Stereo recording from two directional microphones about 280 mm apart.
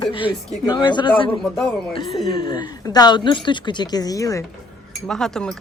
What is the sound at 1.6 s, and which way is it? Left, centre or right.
Speech, centre.